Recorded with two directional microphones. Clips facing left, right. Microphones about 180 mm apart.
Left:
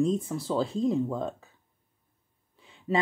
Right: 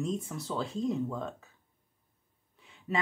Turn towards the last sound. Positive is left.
turn(degrees=30)  # may be behind; listen again after turning